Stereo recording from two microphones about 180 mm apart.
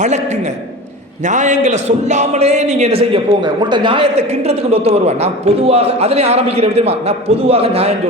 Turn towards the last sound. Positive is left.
turn(degrees=-35)  # may be behind; listen again after turning